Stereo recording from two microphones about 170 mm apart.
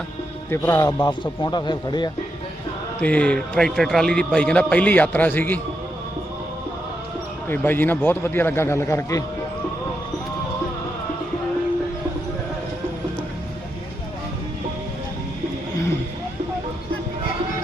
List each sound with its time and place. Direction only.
0.5 s a man's voice: 15° left (ahead or behind)
3.0 s a man's voice: 10° left (ahead or behind)
7.4 s a man's voice: 10° left (ahead or behind)